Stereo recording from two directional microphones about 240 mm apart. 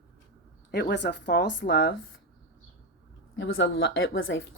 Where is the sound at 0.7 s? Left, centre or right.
Left.